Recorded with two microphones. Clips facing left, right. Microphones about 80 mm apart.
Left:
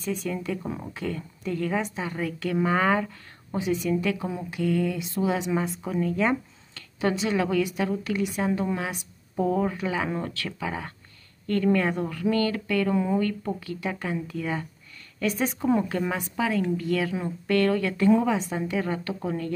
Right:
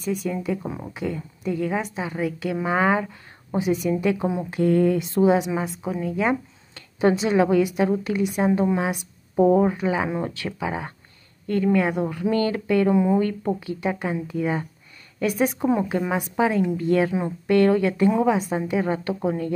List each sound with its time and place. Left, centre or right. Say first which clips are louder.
0.0 s a woman's voice: right 4 dB; centre; by 5.2 s right
5.4 s speech: right 1 dB; centre
6.7 s a woman's voice: right 6 dB; right